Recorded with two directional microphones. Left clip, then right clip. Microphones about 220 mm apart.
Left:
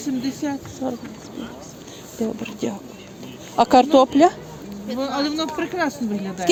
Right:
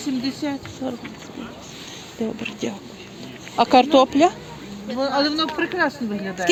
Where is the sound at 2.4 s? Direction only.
10° left (ahead or behind).